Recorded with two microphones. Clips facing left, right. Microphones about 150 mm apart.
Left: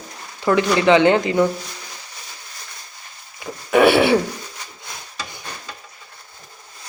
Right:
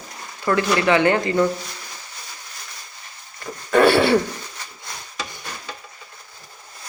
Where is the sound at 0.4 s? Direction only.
20° left (ahead or behind).